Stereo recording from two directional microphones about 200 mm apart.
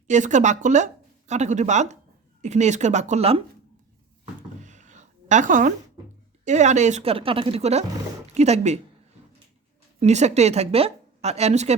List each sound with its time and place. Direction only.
0.1 s a woman's voice: 35° right (ahead or behind)
4.6 s a sound: 35° right (ahead or behind)
6.4 s a woman's voice: 35° right (ahead or behind)
10.0 s a woman's voice: 35° right (ahead or behind)